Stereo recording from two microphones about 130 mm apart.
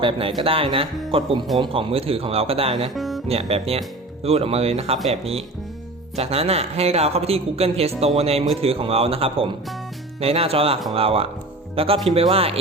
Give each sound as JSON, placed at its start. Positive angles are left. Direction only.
{"t": 0.0, "sound": "speech", "side_deg": -40}
{"t": 2.9, "sound": "music", "side_deg": 0}
{"t": 3.2, "sound": "speech", "side_deg": -50}
{"t": 6.1, "sound": "speech", "side_deg": -50}